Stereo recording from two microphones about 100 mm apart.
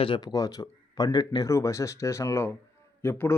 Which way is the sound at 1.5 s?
30° left (ahead or behind).